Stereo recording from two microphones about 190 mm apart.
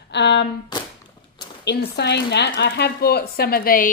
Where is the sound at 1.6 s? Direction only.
60° left (ahead or behind).